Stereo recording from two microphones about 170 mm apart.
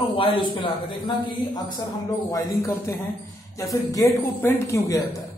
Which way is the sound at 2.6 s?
15° left (ahead or behind).